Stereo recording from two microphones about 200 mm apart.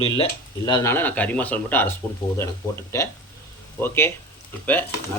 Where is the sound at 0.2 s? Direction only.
20° left (ahead or behind).